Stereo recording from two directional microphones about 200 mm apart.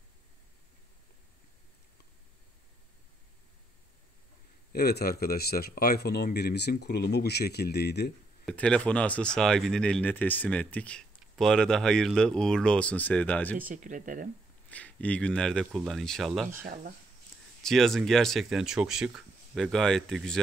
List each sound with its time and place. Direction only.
4.7 s speech: 55° left (ahead or behind)
8.5 s speech: 5° left (ahead or behind)
13.6 s speech: 40° right (ahead or behind)
14.7 s speech: 5° left (ahead or behind)
16.6 s speech: 45° right (ahead or behind)
17.6 s speech: centre (ahead or behind)